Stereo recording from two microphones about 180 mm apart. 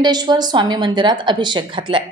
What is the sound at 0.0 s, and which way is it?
A woman's voice, 25° right (ahead or behind).